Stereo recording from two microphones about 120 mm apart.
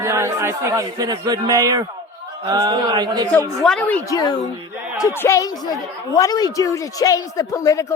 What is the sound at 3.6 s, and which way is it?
Speech, 5° left (ahead or behind).